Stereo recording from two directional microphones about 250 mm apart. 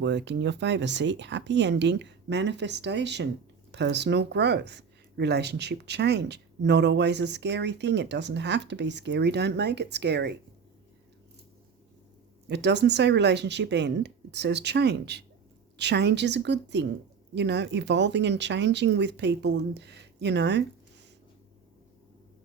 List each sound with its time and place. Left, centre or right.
0.0 s speech: right
12.5 s speech: right